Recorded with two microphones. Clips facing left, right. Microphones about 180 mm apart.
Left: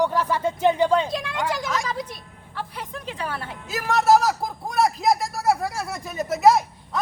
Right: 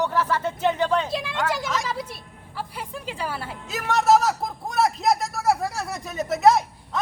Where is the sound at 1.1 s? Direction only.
Centre (ahead or behind).